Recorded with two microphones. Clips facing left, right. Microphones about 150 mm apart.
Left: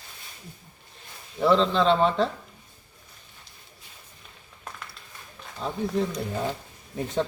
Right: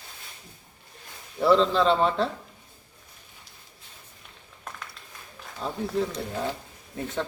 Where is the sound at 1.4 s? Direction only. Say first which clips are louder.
Even; 5° right (ahead or behind).